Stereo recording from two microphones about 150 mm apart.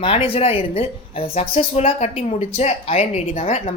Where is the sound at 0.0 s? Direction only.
40° left (ahead or behind).